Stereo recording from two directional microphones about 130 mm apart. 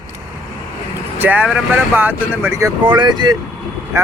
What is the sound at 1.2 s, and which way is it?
Speech, 10° right (ahead or behind).